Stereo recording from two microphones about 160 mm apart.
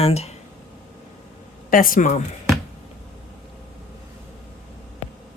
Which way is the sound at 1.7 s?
60° left (ahead or behind).